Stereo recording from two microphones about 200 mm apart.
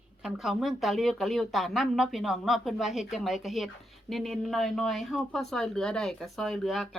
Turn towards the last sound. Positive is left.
turn(degrees=0)  # may be behind; listen again after turning